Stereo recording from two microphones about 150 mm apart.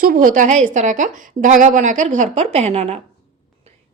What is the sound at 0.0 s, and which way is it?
A woman's voice, 70° right (ahead or behind).